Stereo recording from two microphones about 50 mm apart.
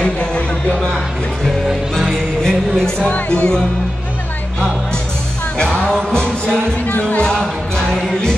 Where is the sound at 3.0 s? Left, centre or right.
Left.